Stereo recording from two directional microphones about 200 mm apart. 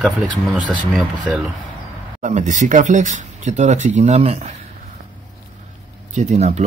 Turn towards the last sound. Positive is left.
turn(degrees=-35)  # may be behind; listen again after turning